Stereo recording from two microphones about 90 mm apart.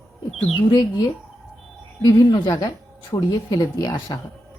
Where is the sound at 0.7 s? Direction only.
50° left (ahead or behind).